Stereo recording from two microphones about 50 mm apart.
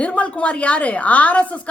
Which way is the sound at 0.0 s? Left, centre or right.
Left.